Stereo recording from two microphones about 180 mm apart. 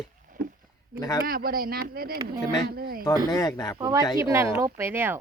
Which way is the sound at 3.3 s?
20° left (ahead or behind).